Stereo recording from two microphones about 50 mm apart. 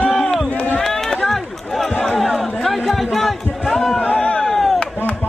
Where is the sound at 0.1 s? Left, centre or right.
Centre.